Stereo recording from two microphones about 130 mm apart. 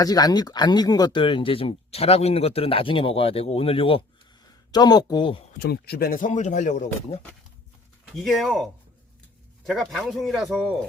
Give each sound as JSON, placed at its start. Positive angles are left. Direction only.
{"t": 0.0, "sound": "speech", "side_deg": 30}
{"t": 4.7, "sound": "speech", "side_deg": 30}
{"t": 6.1, "sound": "a man's voice", "side_deg": 80}
{"t": 8.0, "sound": "speech", "side_deg": 0}